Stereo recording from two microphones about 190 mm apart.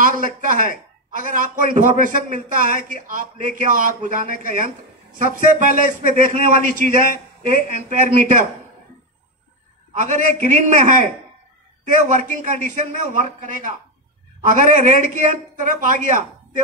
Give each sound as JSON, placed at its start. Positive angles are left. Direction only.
{"t": 0.0, "sound": "a man's voice", "side_deg": -45}
{"t": 9.9, "sound": "a man's voice", "side_deg": -40}